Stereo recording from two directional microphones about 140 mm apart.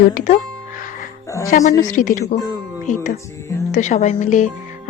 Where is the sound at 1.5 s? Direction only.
65° left (ahead or behind).